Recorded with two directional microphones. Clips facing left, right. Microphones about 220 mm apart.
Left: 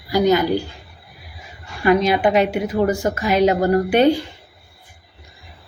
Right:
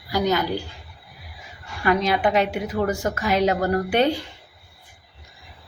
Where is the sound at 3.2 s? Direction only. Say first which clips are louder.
Left 4 dB; 5° left (ahead or behind).